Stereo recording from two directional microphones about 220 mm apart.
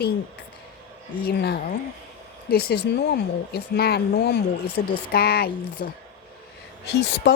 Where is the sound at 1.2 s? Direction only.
45° left (ahead or behind).